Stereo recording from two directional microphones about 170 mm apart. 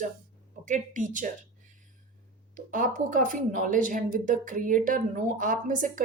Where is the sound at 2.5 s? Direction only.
50° right (ahead or behind).